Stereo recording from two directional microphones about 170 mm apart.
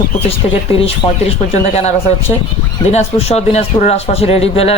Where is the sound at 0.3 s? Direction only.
35° left (ahead or behind).